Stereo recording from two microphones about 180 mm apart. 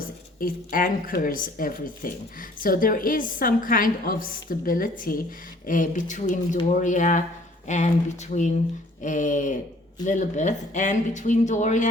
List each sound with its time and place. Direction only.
0.3 s a woman's voice: 50° left (ahead or behind)